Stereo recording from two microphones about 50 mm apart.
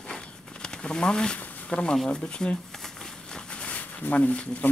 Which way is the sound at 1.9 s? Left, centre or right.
Centre.